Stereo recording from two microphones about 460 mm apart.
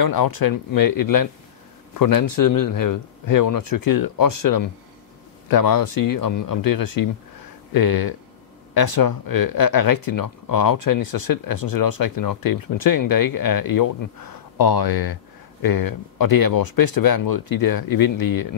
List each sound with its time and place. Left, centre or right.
0.0 s speech: left